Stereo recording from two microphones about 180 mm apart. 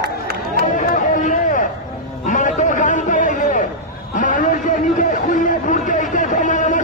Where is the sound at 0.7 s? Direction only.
45° left (ahead or behind).